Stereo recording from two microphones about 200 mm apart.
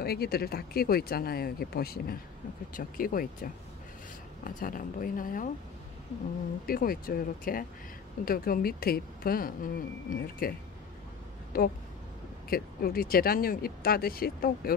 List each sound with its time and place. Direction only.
0.0 s a woman's voice: 50° left (ahead or behind)
4.5 s a woman's voice: 45° left (ahead or behind)
6.6 s a woman's voice: 50° left (ahead or behind)
11.5 s a woman's voice: 50° left (ahead or behind)